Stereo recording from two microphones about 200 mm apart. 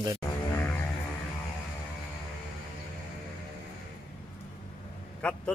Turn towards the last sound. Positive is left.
turn(degrees=5)  # may be behind; listen again after turning